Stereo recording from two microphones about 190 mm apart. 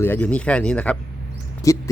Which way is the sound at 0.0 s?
10° left (ahead or behind).